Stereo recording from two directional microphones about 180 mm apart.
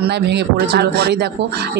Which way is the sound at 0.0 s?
70° right (ahead or behind).